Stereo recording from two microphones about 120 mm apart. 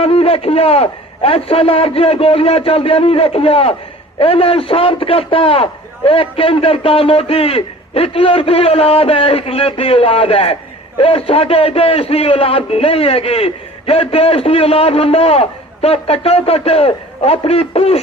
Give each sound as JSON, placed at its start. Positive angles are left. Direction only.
{"t": 0.0, "sound": "a man's voice", "side_deg": 55}